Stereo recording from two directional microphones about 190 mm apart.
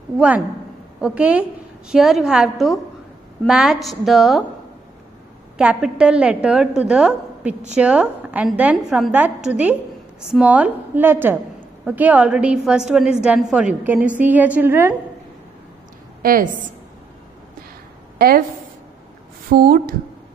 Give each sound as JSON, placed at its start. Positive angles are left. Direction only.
{"t": 1.0, "sound": "a woman's voice", "side_deg": -5}
{"t": 5.6, "sound": "a woman's voice", "side_deg": -5}
{"t": 16.2, "sound": "a woman's voice", "side_deg": -50}
{"t": 18.1, "sound": "a sound", "side_deg": -50}
{"t": 19.5, "sound": "a woman's voice", "side_deg": -55}